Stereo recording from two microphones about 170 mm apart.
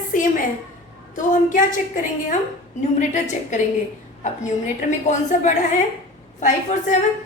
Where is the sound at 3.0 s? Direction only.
45° left (ahead or behind).